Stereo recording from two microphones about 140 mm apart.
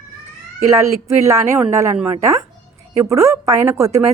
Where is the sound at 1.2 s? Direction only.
20° right (ahead or behind).